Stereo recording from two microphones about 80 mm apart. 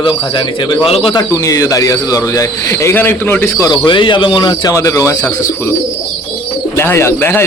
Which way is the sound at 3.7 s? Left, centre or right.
Left.